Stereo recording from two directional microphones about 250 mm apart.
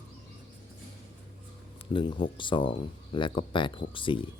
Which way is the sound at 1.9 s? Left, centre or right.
Centre.